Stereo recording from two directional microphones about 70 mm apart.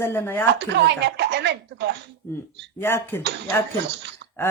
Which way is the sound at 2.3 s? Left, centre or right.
Left.